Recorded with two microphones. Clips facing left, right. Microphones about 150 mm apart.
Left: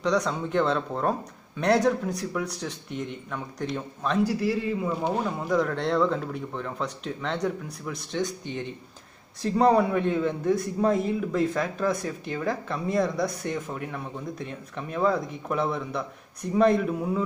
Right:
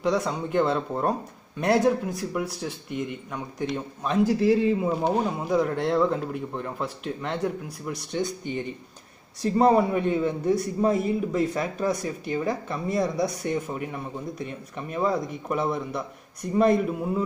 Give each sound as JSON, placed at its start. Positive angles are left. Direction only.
{"t": 0.0, "sound": "a man's voice", "side_deg": -5}
{"t": 4.2, "sound": "a man's voice", "side_deg": -20}